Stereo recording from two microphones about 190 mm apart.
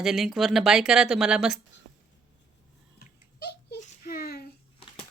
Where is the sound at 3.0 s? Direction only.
55° left (ahead or behind).